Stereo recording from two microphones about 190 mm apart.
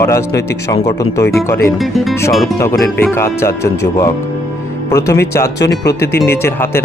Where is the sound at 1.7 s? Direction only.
Centre (ahead or behind).